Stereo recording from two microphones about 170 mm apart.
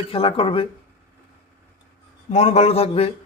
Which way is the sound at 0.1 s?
30° left (ahead or behind).